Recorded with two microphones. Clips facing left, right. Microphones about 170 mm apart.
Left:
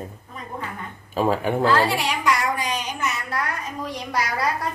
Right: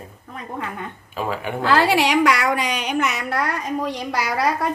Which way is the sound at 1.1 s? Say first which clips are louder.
Left 5 dB; 40° left (ahead or behind).